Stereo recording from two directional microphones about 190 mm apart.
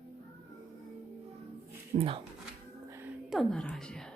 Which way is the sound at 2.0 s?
30° right (ahead or behind).